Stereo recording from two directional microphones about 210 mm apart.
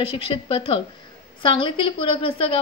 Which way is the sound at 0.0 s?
25° left (ahead or behind).